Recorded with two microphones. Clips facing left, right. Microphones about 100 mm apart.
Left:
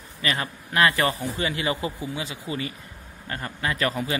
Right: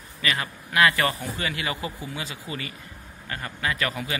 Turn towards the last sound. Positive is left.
turn(degrees=30)  # may be behind; listen again after turning